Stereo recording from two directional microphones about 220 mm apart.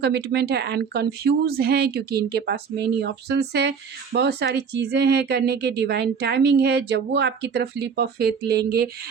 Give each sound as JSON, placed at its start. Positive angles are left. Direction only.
{"t": 0.0, "sound": "speech", "side_deg": -50}